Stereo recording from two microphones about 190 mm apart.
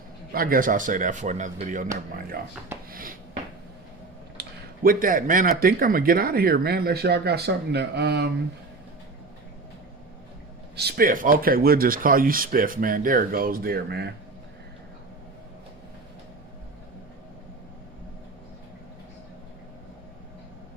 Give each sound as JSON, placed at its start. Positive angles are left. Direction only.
{"t": 0.3, "sound": "speech", "side_deg": -50}
{"t": 2.9, "sound": "a sound", "side_deg": -50}
{"t": 4.4, "sound": "speech", "side_deg": -50}
{"t": 10.8, "sound": "speech", "side_deg": -55}